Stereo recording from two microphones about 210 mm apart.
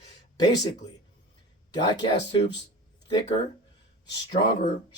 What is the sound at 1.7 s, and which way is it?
Speech, 20° left (ahead or behind).